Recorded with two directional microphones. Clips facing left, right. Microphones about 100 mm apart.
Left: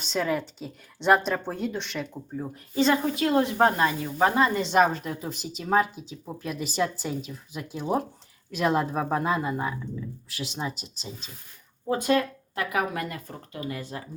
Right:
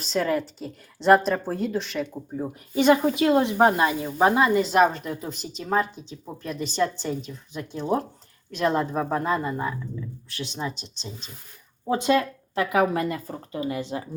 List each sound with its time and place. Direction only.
0.0 s a woman's voice: centre (ahead or behind)
2.4 s a woman's voice: 15° right (ahead or behind)
4.4 s a woman's voice: 5° right (ahead or behind)
11.9 s speech: 20° right (ahead or behind)